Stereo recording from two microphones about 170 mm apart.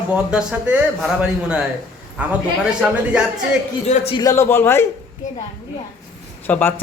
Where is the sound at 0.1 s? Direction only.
5° right (ahead or behind).